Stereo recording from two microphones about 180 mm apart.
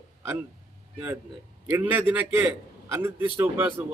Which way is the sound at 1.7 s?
10° right (ahead or behind).